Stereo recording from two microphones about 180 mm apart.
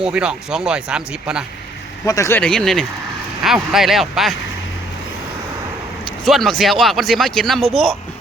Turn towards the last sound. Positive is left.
turn(degrees=0)  # may be behind; listen again after turning